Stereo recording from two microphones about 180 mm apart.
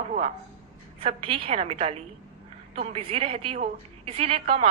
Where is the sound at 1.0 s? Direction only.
30° right (ahead or behind).